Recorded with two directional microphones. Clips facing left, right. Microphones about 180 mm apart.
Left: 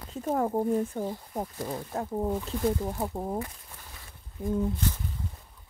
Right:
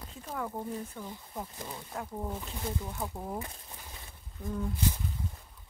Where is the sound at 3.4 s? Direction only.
25° right (ahead or behind).